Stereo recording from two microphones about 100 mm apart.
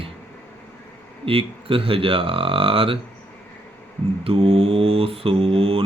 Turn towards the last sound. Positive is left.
turn(degrees=-70)  # may be behind; listen again after turning